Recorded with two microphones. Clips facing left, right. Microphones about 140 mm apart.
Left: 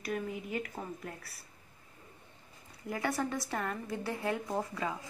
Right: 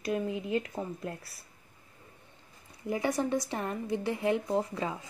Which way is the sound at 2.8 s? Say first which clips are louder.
Right 4 dB; 20° right (ahead or behind).